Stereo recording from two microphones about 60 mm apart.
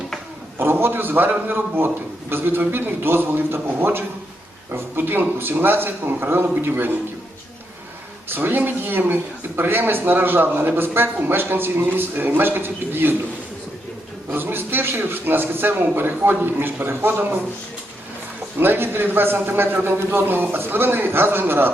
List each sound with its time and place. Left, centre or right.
0.6 s speech: right
8.3 s speech: right
14.3 s speech: right
18.6 s speech: right